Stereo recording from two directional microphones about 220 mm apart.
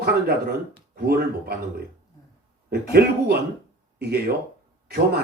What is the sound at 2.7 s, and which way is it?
Speech, 45° right (ahead or behind).